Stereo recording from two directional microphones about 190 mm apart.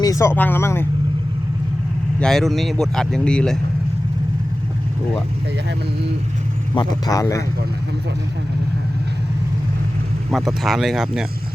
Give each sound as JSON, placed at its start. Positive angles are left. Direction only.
{"t": 0.0, "sound": "speech", "side_deg": 15}
{"t": 2.1, "sound": "speech", "side_deg": 5}
{"t": 6.7, "sound": "speech", "side_deg": 20}
{"t": 10.3, "sound": "speech", "side_deg": 0}